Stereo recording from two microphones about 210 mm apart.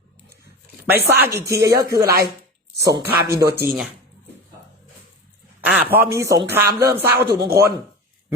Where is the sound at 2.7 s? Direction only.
50° right (ahead or behind).